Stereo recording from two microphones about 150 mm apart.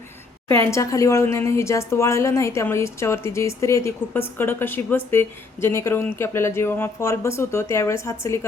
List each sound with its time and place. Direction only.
0.4 s speech: 20° left (ahead or behind)